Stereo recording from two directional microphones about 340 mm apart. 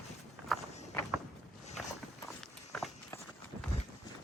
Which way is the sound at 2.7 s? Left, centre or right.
Centre.